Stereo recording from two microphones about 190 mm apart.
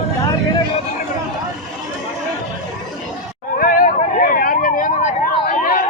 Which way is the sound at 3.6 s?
45° left (ahead or behind).